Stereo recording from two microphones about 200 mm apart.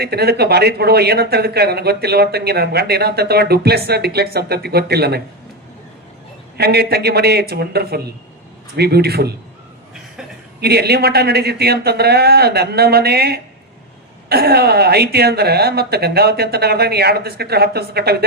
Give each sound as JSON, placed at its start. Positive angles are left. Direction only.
{"t": 0.0, "sound": "speech", "side_deg": -50}
{"t": 6.6, "sound": "speech", "side_deg": -55}
{"t": 10.6, "sound": "speech", "side_deg": -55}